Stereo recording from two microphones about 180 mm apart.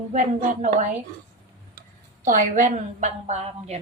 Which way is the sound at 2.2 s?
50° right (ahead or behind).